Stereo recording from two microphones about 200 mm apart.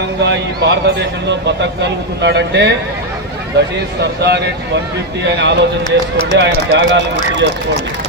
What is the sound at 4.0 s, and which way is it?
Speech, 55° right (ahead or behind).